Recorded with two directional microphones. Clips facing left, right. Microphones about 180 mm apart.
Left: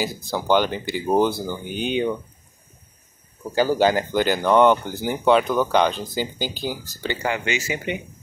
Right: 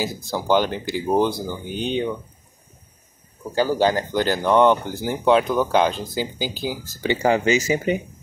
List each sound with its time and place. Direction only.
0.0 s speech: centre (ahead or behind)
3.5 s speech: 10° left (ahead or behind); by 6.8 s 5° right (ahead or behind)
7.2 s speech: 30° right (ahead or behind)